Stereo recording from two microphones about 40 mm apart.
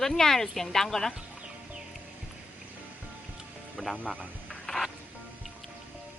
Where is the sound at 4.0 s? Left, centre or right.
Left.